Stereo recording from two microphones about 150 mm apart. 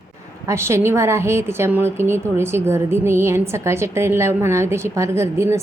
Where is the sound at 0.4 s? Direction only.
20° right (ahead or behind).